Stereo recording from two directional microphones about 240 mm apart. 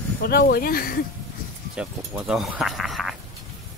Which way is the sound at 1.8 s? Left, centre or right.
Centre.